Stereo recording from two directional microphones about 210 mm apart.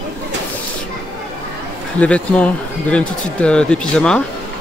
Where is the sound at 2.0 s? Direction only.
5° left (ahead or behind).